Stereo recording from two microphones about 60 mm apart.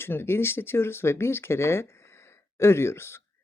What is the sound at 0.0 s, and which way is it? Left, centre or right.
Speech, left.